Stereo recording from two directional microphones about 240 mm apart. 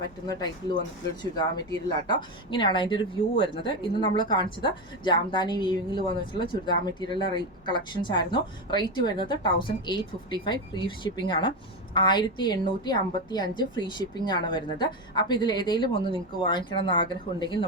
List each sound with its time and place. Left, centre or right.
0.3 s a woman's voice: centre